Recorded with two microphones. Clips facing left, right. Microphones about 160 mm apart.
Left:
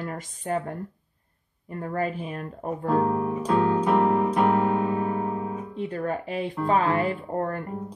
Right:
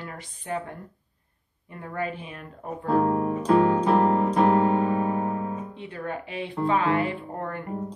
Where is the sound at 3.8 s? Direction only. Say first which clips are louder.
Even; 30° right (ahead or behind).